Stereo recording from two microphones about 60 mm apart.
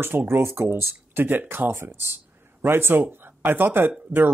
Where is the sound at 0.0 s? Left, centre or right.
Right.